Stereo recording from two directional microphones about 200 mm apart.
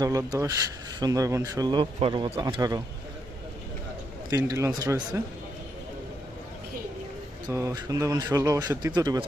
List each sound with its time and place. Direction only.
0.0 s speech: 15° right (ahead or behind)
4.3 s speech: 15° right (ahead or behind)
7.5 s speech: 15° right (ahead or behind)